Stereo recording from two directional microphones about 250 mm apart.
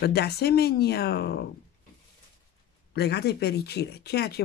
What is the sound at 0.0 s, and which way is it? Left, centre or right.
Speech, left.